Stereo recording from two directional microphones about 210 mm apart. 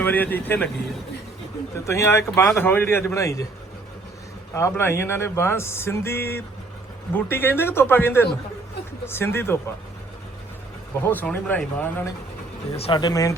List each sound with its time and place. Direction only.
0.0 s speech: 10° left (ahead or behind)
1.9 s speech: 10° left (ahead or behind)
4.5 s speech: 10° left (ahead or behind)
11.0 s speech: 10° left (ahead or behind)
12.7 s speech: 25° left (ahead or behind)